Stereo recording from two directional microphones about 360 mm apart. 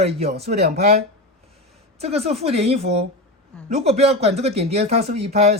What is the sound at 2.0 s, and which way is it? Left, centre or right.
Speech, centre.